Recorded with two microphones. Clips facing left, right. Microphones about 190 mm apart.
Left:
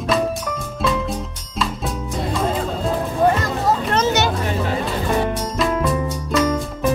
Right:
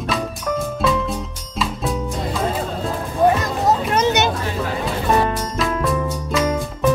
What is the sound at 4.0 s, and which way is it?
Children playing, 15° right (ahead or behind).